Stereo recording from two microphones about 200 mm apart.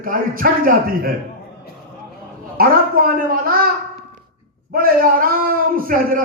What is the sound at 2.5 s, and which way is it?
Speech, 45° right (ahead or behind).